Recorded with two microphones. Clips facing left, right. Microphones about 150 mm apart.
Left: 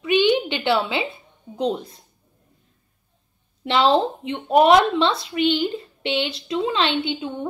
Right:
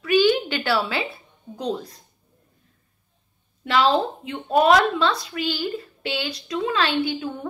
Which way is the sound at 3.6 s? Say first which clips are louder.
Left 2 dB; 25° left (ahead or behind).